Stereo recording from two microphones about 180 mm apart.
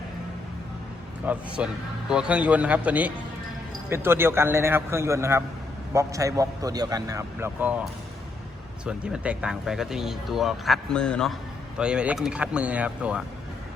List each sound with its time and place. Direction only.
1.2 s a man's voice: 5° right (ahead or behind)
8.8 s a man's voice: 5° right (ahead or behind)